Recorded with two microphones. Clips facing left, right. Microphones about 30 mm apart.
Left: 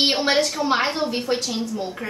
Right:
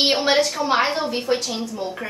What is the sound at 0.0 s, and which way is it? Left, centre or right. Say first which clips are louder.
A woman's voice: right 1 dB; centre.